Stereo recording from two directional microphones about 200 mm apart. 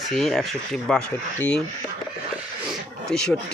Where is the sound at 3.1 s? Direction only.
5° left (ahead or behind).